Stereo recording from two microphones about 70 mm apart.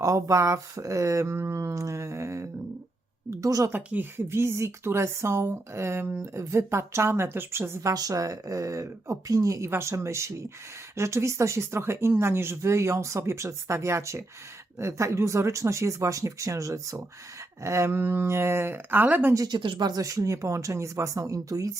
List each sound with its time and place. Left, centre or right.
0.0 s speech: right
3.2 s a sound: right
3.7 s speech: right
4.3 s speech: right
7.9 s speech: right
19.5 s speech: right
20.0 s speech: right